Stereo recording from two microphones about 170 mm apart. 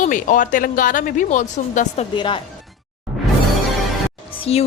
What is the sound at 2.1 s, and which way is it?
Speech, 30° left (ahead or behind).